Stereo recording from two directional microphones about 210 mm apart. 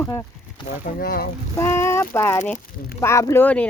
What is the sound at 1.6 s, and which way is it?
Speech, 15° left (ahead or behind).